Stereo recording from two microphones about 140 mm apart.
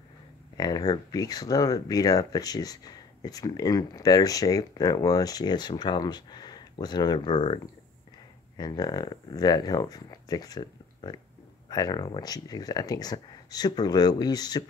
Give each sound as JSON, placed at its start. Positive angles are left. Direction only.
{"t": 0.6, "sound": "speech", "side_deg": 30}